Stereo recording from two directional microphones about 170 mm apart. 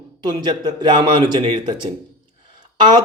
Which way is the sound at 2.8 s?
25° right (ahead or behind).